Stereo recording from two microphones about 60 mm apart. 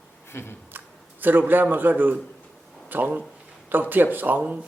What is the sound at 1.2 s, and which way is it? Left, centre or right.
Speech, right.